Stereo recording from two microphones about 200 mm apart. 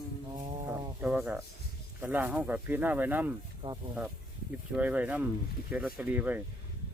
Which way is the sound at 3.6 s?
25° right (ahead or behind).